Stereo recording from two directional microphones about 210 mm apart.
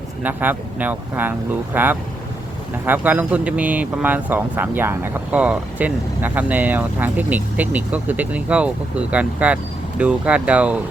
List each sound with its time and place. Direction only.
0.2 s speech: 10° right (ahead or behind)